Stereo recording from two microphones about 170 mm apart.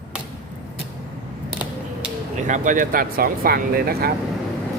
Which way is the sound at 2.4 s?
50° right (ahead or behind).